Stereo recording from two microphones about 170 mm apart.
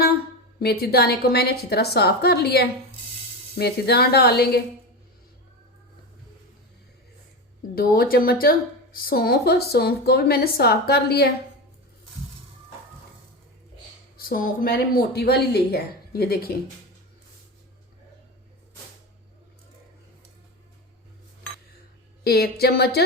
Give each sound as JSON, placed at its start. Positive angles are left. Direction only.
{"t": 0.6, "sound": "a woman's voice", "side_deg": 65}
{"t": 7.8, "sound": "a woman's voice", "side_deg": 60}
{"t": 14.2, "sound": "a woman's voice", "side_deg": 55}
{"t": 22.2, "sound": "a woman's voice", "side_deg": 70}